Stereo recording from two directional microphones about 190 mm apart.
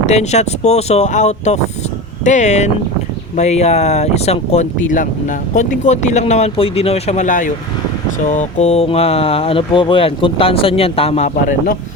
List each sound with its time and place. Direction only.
0.0 s speech: 35° left (ahead or behind)